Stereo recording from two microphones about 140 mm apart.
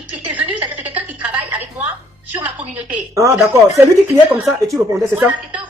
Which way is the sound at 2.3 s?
15° right (ahead or behind).